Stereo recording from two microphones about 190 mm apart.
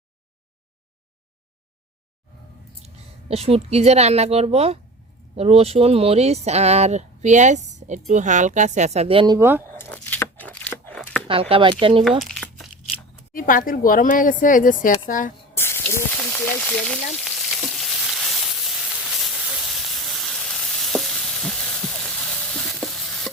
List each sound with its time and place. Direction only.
2.8 s a woman's voice: 30° right (ahead or behind); by 9.6 s 10° right (ahead or behind)
9.7 s a sound: 10° left (ahead or behind)
11.3 s speech: 30° right (ahead or behind)
12.4 s tearing: centre (ahead or behind)
13.3 s speech: 45° left (ahead or behind)
15.5 s sizzle: 10° left (ahead or behind)